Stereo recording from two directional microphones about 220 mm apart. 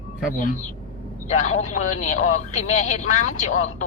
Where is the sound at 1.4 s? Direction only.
35° left (ahead or behind).